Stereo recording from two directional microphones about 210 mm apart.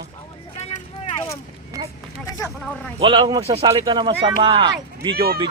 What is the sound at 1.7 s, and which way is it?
Speech, 15° right (ahead or behind).